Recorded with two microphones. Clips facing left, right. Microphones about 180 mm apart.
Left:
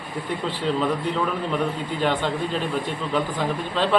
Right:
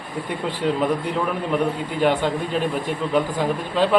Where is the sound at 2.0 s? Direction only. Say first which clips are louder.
Right 4 dB; 10° right (ahead or behind).